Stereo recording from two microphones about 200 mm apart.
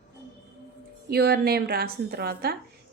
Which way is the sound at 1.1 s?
50° right (ahead or behind).